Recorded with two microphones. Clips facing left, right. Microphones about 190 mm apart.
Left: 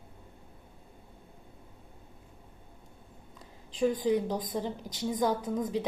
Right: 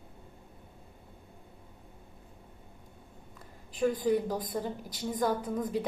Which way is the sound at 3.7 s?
15° left (ahead or behind).